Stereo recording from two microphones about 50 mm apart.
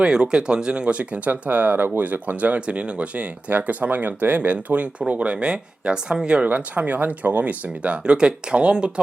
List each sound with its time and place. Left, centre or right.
0.0 s speech: centre
6.5 s speech: right
8.0 s speech: centre